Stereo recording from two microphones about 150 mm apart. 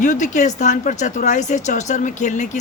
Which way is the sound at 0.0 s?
55° left (ahead or behind).